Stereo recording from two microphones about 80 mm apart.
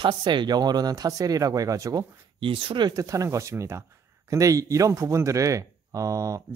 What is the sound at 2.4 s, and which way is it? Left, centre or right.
Speech, right.